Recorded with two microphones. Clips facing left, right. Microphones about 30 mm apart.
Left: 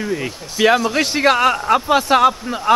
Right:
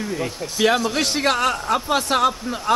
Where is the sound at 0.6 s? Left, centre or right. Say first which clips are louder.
Left 4 dB; centre.